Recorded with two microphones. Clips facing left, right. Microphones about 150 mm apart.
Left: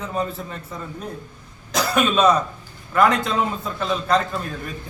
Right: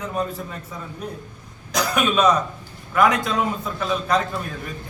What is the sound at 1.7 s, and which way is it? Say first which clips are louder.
A man's voice: left 1 dB; 5° left (ahead or behind).